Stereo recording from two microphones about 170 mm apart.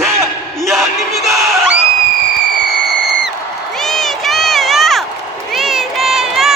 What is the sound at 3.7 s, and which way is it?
Crowd, centre (ahead or behind).